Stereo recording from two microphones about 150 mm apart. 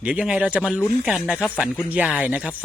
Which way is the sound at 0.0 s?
5° right (ahead or behind).